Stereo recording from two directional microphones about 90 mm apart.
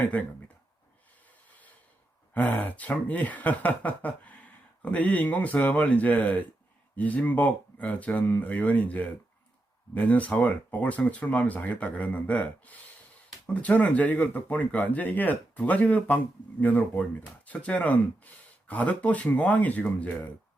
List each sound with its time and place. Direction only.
0.0 s speech: 15° left (ahead or behind)
2.3 s speech: 15° left (ahead or behind)